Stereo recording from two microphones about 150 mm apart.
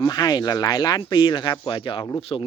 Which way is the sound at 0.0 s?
25° left (ahead or behind).